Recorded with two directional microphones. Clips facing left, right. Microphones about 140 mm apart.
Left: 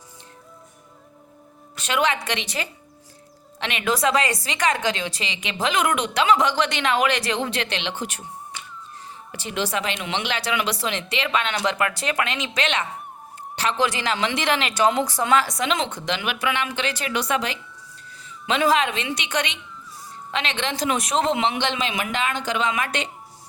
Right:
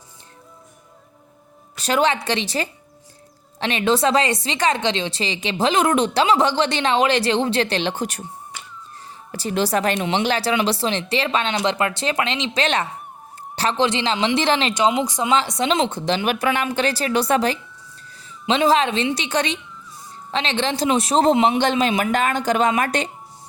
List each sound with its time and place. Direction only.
1.7 s speech: 35° right (ahead or behind)
9.3 s speech: 35° right (ahead or behind)
14.7 s a woman's voice: 15° right (ahead or behind); by 23.0 s 40° right (ahead or behind)